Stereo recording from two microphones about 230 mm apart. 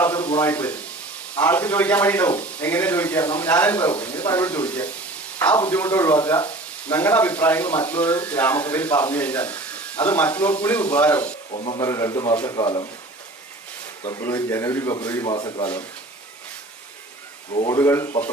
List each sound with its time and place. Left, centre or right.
0.0 s a sound: centre
0.3 s speech: centre
11.5 s speech: left
11.8 s speech: centre
14.1 s speech: centre
17.7 s speech: centre